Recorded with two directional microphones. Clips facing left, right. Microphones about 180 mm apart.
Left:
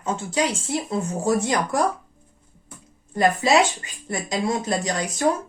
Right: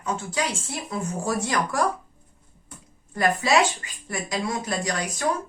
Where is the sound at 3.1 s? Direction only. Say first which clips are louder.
Left 3 dB; 25° left (ahead or behind).